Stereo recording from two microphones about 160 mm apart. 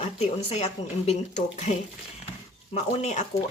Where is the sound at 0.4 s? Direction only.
40° left (ahead or behind).